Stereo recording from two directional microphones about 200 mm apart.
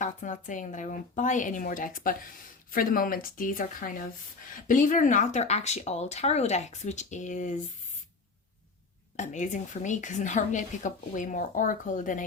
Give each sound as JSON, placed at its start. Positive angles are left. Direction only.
{"t": 0.0, "sound": "a woman's voice", "side_deg": 40}
{"t": 9.1, "sound": "a woman's voice", "side_deg": 35}